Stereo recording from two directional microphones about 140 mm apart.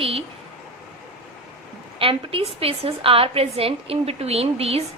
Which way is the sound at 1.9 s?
40° right (ahead or behind).